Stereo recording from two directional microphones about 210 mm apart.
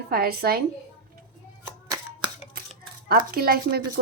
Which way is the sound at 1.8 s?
15° right (ahead or behind).